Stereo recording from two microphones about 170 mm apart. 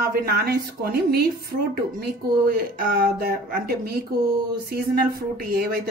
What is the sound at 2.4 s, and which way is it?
Speech, 60° right (ahead or behind).